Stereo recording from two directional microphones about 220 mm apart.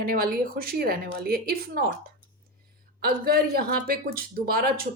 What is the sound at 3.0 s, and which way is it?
A woman's voice, 45° right (ahead or behind).